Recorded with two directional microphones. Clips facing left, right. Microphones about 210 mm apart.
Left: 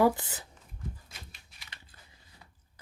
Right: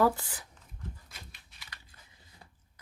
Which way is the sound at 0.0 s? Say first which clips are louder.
Left 2 dB; 20° left (ahead or behind).